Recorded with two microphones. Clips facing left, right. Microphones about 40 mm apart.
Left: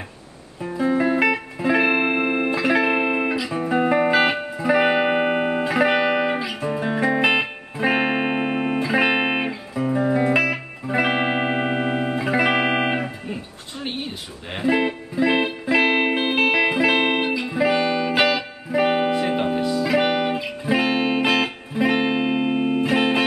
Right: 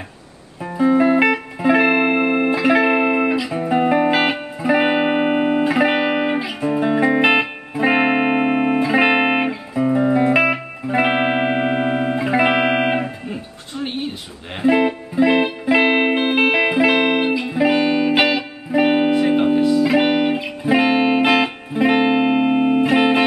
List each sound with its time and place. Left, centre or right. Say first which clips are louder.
0.6 s music: right 5 dB; centre
14.6 s music: right 5 dB; centre
16.9 s music: right 3 dB; centre
17.2 s music: right 3 dB; centre